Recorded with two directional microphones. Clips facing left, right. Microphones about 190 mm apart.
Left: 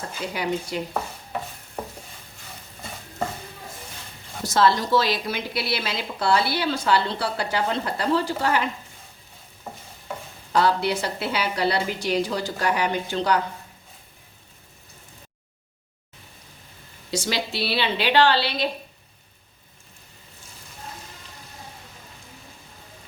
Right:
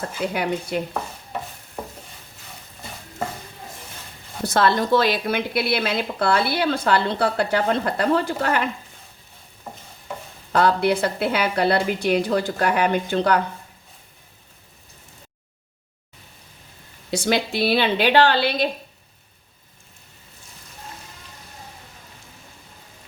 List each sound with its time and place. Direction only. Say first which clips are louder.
0.2 s speech: right 6 dB; 60° right (ahead or behind)
4.4 s speech: right 1 dB; 55° right (ahead or behind)
9.7 s stir: even; 5° left (ahead or behind)
10.5 s speech: right 3 dB; 55° right (ahead or behind)
17.1 s a woman's voice: right 5 dB; 55° right (ahead or behind)